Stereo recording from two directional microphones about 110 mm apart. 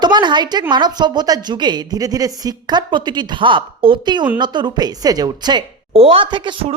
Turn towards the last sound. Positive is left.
turn(degrees=-50)  # may be behind; listen again after turning